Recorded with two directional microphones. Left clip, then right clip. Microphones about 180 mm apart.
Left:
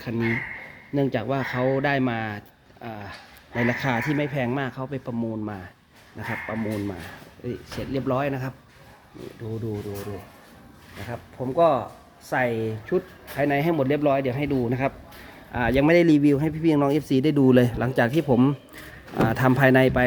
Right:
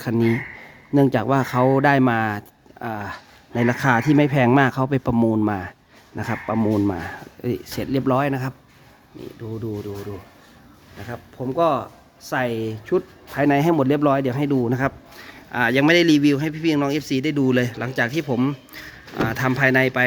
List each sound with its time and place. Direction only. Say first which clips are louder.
0.0 s speech: right 5 dB; 35° right (ahead or behind)
11.1 s speech: right 1 dB; 25° right (ahead or behind)
15.5 s speech: right 3 dB; 5° right (ahead or behind); by 20.1 s 15° left (ahead or behind)